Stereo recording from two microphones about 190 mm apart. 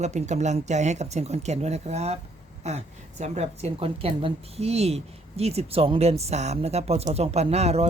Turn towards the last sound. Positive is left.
turn(degrees=-35)  # may be behind; listen again after turning